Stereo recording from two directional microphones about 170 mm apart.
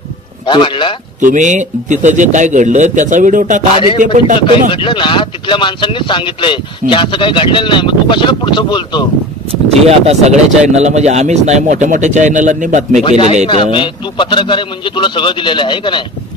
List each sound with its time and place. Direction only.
0.5 s speech: 30° left (ahead or behind)
1.2 s speech: 45° right (ahead or behind)
4.4 s speech: 30° left (ahead or behind)
9.5 s speech: 35° right (ahead or behind)
13.5 s speech: 30° left (ahead or behind)